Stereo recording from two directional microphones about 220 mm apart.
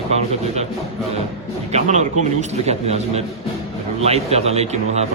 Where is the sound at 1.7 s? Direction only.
30° right (ahead or behind).